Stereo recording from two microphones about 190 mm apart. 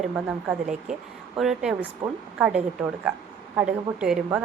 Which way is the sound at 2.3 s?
5° right (ahead or behind).